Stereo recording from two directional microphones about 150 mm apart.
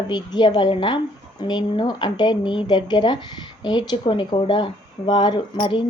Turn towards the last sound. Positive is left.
turn(degrees=30)  # may be behind; listen again after turning